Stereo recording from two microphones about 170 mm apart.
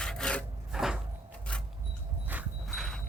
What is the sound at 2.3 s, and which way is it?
Horse, 10° right (ahead or behind).